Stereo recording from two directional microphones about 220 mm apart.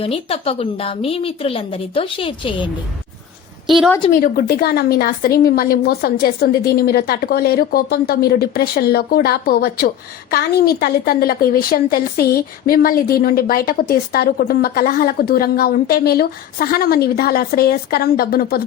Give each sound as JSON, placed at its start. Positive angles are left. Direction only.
{"t": 0.0, "sound": "a woman's voice", "side_deg": 25}
{"t": 3.7, "sound": "a woman's voice", "side_deg": 0}
{"t": 4.1, "sound": "a woman's voice", "side_deg": 45}